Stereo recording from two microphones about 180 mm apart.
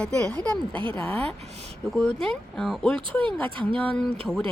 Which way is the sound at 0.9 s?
10° left (ahead or behind).